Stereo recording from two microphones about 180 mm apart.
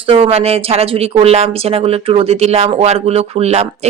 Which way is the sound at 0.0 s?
30° right (ahead or behind).